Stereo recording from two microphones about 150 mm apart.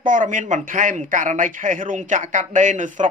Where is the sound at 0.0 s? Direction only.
60° right (ahead or behind).